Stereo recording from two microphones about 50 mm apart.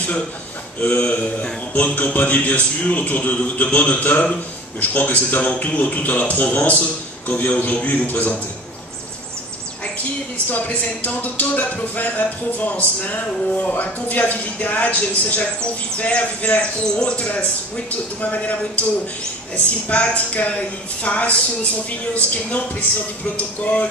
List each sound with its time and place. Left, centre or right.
0.7 s speech: left
10.3 s speech: left